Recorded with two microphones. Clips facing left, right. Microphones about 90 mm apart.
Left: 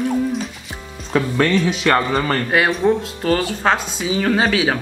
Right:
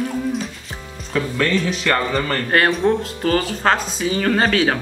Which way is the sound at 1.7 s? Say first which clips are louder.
Left 3 dB; 20° left (ahead or behind).